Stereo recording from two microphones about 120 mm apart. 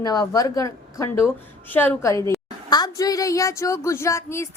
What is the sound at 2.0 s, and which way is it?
A woman's voice, 25° left (ahead or behind).